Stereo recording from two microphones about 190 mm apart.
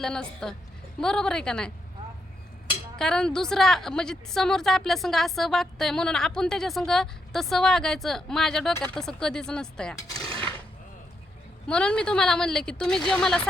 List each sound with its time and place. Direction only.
0.0 s a woman's voice: 5° left (ahead or behind)
3.0 s a woman's voice: 5° left (ahead or behind)
10.2 s mechanisms: 30° right (ahead or behind)
11.7 s a woman's voice: 5° left (ahead or behind)